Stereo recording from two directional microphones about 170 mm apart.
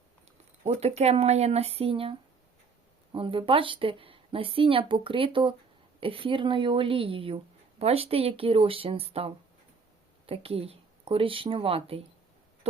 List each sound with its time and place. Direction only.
0.6 s a woman's voice: 40° right (ahead or behind)